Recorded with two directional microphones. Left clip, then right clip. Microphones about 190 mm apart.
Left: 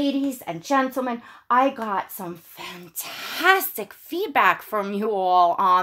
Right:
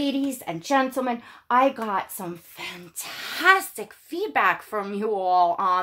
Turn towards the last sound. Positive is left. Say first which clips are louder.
# left 3 dB
turn(degrees=35)  # may be behind; listen again after turning